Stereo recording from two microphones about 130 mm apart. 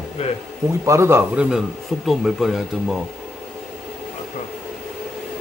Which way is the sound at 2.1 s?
Centre (ahead or behind).